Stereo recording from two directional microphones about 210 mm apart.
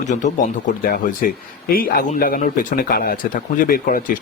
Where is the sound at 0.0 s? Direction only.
35° left (ahead or behind).